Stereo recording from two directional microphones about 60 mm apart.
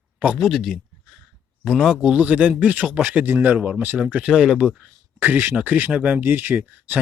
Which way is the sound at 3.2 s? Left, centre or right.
Right.